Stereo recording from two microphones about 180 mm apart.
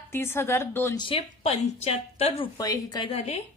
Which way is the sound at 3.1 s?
35° left (ahead or behind).